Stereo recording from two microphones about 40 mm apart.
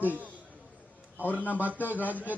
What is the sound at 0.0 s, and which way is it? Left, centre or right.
Speech, right.